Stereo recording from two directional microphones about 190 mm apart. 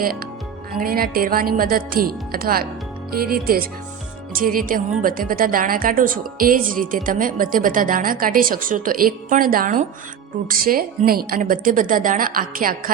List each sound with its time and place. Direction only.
0.8 s a woman's voice: 50° right (ahead or behind)